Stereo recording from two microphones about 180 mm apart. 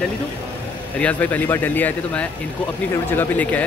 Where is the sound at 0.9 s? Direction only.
10° left (ahead or behind).